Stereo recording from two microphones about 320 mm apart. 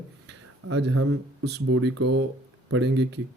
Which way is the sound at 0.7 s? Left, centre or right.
Right.